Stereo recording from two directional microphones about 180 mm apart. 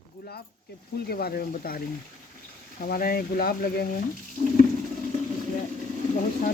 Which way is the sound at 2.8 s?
55° left (ahead or behind).